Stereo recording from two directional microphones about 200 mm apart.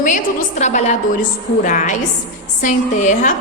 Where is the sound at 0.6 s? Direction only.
35° left (ahead or behind).